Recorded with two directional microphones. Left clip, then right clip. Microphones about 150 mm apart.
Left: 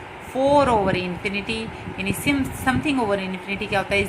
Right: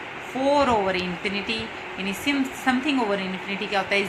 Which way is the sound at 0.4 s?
35° left (ahead or behind).